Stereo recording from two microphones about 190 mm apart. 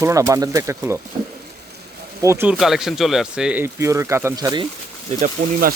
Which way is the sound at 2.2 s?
15° right (ahead or behind).